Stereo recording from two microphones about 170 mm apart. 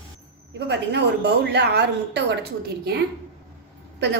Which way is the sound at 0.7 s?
85° right.